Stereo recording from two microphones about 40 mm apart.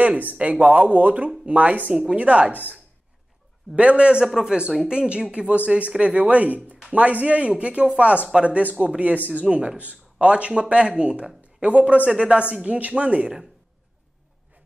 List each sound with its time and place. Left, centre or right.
0.0 s speech: right
3.7 s speech: right